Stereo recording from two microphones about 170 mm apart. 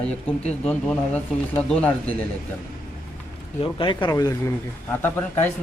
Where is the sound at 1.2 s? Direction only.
10° left (ahead or behind).